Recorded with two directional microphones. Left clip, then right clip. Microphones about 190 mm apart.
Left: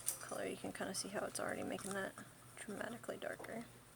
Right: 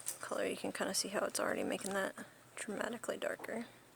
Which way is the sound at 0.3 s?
55° right (ahead or behind).